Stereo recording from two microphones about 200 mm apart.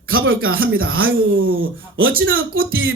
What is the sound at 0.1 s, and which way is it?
Speech, 90° right.